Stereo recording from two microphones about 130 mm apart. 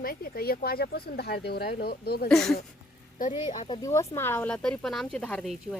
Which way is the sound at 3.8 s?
20° left (ahead or behind).